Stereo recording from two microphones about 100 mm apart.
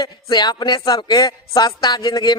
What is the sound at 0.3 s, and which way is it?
Speech, 45° left (ahead or behind).